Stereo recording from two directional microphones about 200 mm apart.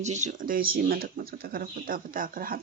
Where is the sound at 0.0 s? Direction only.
35° right (ahead or behind).